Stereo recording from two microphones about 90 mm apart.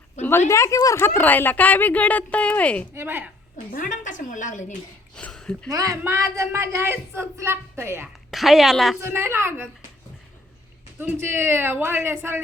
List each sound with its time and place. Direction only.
0.3 s a woman's voice: 30° left (ahead or behind); by 2.8 s 15° left (ahead or behind)
2.9 s a woman's voice: 25° right (ahead or behind)
5.1 s speech: 10° left (ahead or behind)
5.7 s a woman's voice: 40° right (ahead or behind)
8.3 s a woman's voice: centre (ahead or behind)
9.0 s a woman's voice: 30° right (ahead or behind)
11.0 s a woman's voice: 25° right (ahead or behind)